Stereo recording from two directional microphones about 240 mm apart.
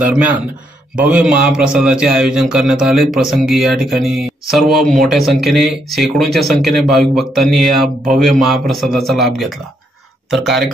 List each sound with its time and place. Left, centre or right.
0.1 s a man's voice: centre